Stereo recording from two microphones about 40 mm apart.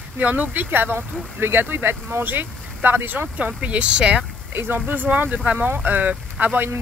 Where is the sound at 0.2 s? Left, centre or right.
Right.